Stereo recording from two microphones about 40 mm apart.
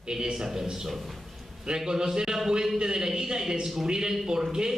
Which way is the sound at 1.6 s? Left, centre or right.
Centre.